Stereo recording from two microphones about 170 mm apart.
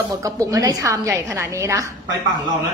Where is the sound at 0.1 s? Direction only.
20° right (ahead or behind).